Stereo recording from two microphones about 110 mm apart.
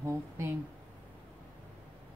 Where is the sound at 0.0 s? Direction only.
25° right (ahead or behind).